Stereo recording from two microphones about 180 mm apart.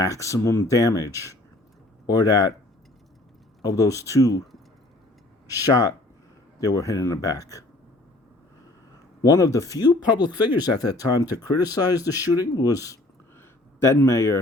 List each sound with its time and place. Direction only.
0.0 s speech: 15° left (ahead or behind)
3.6 s speech: 20° left (ahead or behind)
5.5 s speech: 20° left (ahead or behind)
9.2 s speech: 20° left (ahead or behind)